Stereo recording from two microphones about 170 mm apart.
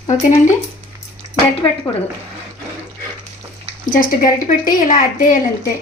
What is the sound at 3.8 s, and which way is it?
Speech, 50° left (ahead or behind).